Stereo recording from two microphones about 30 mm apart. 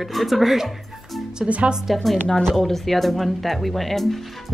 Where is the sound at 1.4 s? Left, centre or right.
Right.